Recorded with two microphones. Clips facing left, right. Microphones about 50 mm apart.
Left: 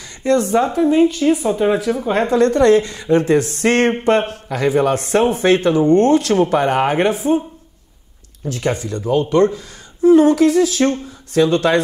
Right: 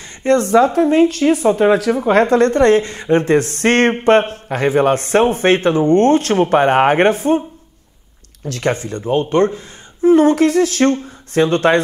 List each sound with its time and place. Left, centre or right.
0.2 s speech: right
1.9 s speech: right
2.1 s speech: right
8.5 s speech: right
8.7 s speech: right